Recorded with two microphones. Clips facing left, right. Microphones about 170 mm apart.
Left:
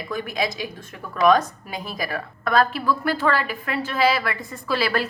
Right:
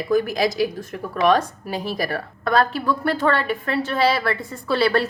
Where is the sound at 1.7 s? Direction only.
35° right (ahead or behind).